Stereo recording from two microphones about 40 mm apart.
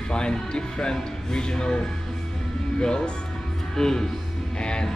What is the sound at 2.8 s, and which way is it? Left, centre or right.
Speech, centre.